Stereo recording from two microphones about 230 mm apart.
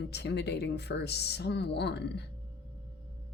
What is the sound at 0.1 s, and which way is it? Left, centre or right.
Speech, left.